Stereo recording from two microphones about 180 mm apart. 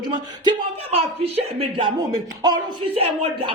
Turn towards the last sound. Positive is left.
turn(degrees=-30)  # may be behind; listen again after turning